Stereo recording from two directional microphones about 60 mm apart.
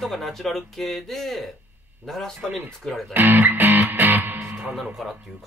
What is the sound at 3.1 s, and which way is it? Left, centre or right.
Music, right.